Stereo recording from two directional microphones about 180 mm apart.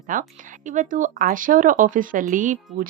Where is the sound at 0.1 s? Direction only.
50° right (ahead or behind).